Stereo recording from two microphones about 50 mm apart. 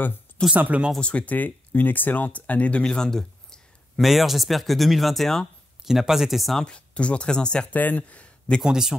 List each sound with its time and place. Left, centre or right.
0.6 s speech: right
1.0 s speech: left
2.8 s a sound: centre
4.0 s speech: centre
5.9 s speech: centre
6.6 s speech: left
7.7 s speech: left
8.6 s speech: centre